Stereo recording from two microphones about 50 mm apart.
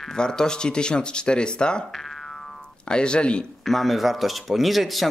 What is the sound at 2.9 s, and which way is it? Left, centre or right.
Speech, centre.